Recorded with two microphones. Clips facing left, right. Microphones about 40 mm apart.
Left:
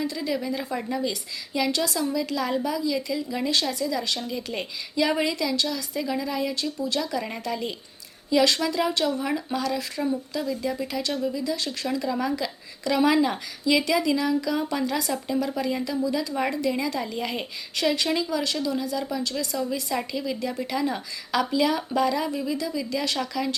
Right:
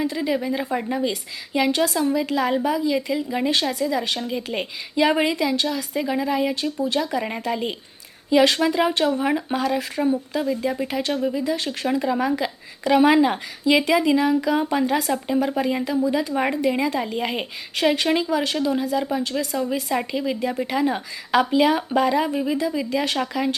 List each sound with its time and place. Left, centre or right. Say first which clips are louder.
0.0 s a woman's voice: right 4 dB; right